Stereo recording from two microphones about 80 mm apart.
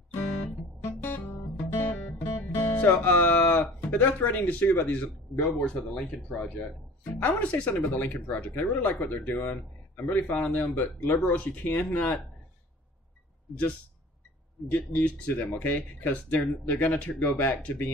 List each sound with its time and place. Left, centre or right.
0.1 s guitar: left
2.3 s music: left
3.9 s speech: left
14.7 s speech: left